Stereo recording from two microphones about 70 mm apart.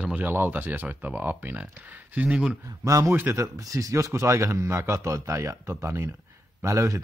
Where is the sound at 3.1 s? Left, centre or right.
Right.